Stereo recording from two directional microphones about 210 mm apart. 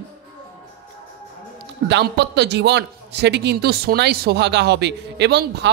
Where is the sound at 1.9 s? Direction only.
55° right (ahead or behind).